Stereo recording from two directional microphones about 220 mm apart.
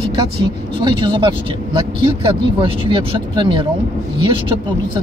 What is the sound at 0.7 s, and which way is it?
Speech, 20° right (ahead or behind).